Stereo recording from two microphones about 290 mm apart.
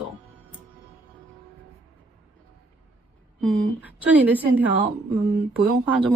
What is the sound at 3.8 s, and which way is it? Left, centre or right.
Speech, centre.